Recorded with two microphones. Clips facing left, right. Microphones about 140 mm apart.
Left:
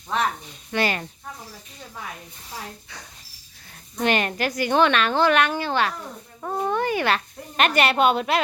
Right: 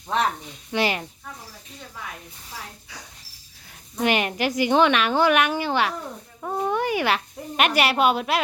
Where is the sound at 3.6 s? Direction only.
5° right (ahead or behind).